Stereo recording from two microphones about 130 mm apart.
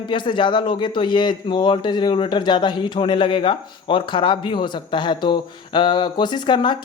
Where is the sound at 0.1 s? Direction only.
40° left (ahead or behind).